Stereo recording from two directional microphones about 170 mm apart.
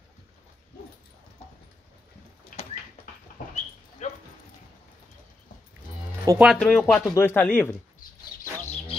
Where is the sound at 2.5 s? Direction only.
55° left (ahead or behind).